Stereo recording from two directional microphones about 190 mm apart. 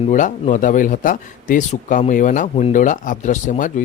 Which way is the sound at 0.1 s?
40° left (ahead or behind).